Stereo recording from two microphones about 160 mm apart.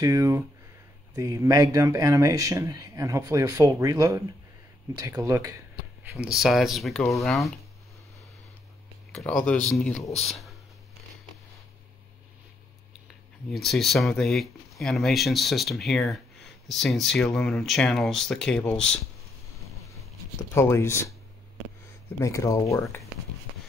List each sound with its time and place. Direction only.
0.0 s speech: 20° right (ahead or behind)
6.1 s speech: 5° right (ahead or behind)
9.3 s speech: 10° left (ahead or behind)
13.5 s speech: centre (ahead or behind)
20.5 s speech: 15° left (ahead or behind)
22.2 s speech: 20° left (ahead or behind)